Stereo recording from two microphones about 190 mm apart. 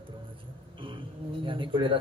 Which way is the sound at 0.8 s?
25° right (ahead or behind).